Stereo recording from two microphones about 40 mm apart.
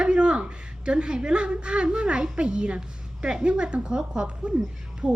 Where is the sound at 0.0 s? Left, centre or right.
Right.